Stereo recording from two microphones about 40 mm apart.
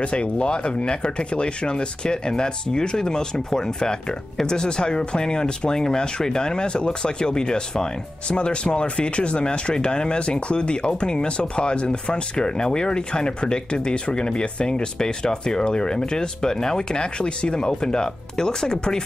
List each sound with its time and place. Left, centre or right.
0.0 s speech: left